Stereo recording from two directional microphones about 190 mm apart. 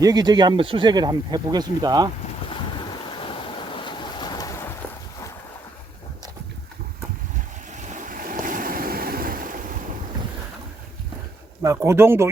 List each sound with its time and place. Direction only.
0.0 s speech: 20° right (ahead or behind)
3.2 s ocean: 25° left (ahead or behind)
7.8 s waves: 40° right (ahead or behind)
11.6 s speech: 15° right (ahead or behind)